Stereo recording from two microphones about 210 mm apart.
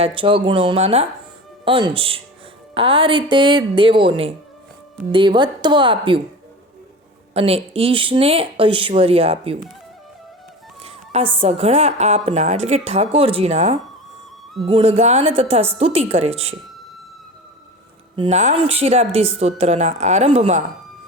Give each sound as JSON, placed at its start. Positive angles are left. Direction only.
{"t": 0.0, "sound": "speech", "side_deg": -25}
{"t": 7.3, "sound": "speech", "side_deg": -30}
{"t": 10.8, "sound": "music", "side_deg": -30}
{"t": 11.3, "sound": "speech", "side_deg": -30}
{"t": 18.2, "sound": "speech", "side_deg": -30}